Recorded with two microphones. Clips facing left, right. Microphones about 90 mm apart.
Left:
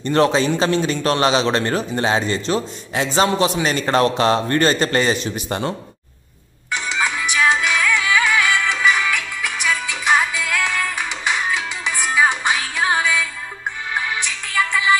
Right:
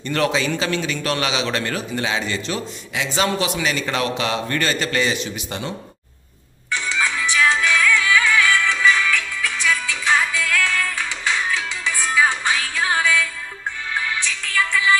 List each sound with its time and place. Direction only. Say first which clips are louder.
0.0 s a man's voice: left 5 dB; 30° left (ahead or behind)
6.7 s music: left 1 dB; 15° left (ahead or behind)